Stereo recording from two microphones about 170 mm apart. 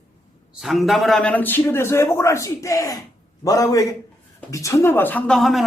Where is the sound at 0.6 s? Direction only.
Centre (ahead or behind).